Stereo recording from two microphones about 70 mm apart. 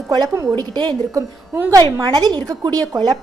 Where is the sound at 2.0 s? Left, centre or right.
Right.